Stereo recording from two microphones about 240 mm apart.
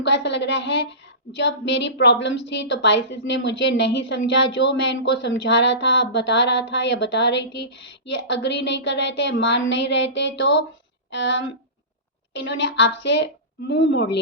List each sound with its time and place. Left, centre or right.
0.0 s a woman's voice: left